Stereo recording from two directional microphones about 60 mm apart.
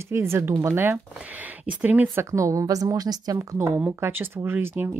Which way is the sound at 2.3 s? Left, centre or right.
Right.